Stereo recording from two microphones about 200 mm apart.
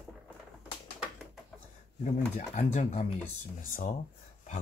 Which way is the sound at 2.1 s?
35° left (ahead or behind).